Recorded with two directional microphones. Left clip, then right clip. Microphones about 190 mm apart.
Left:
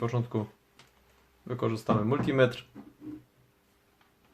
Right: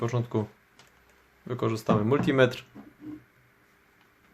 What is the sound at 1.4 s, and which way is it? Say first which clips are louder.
Speech: right 2 dB; 10° right (ahead or behind).